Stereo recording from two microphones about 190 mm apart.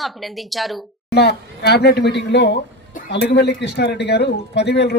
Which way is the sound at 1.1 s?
60° left (ahead or behind).